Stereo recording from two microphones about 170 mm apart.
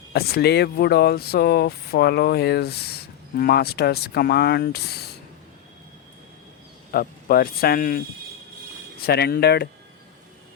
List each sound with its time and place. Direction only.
0.1 s speech: 65° left (ahead or behind)
6.9 s speech: 60° left (ahead or behind)